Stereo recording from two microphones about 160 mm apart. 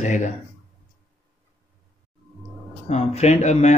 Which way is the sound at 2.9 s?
40° left (ahead or behind).